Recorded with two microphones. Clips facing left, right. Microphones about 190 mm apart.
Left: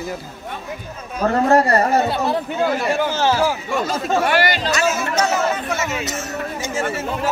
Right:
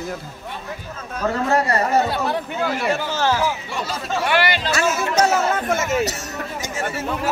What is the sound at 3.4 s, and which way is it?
Speech, 45° left (ahead or behind).